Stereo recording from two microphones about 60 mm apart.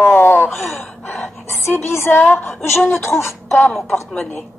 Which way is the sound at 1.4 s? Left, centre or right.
Left.